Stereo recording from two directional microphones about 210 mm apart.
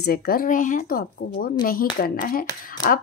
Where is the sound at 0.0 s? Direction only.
45° left (ahead or behind).